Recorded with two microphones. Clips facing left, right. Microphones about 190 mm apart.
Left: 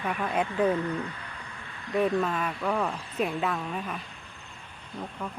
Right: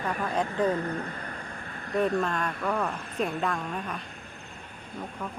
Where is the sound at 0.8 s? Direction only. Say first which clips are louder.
Left 1 dB; 45° right (ahead or behind).